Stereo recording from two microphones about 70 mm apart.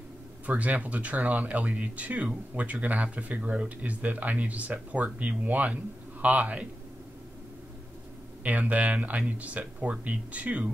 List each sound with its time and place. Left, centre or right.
0.5 s speech: right
8.5 s speech: right